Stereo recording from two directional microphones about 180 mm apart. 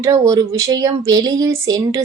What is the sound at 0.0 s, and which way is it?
Speech, 20° right (ahead or behind).